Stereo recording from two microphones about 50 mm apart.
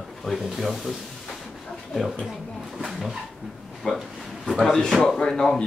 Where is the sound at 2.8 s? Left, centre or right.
Centre.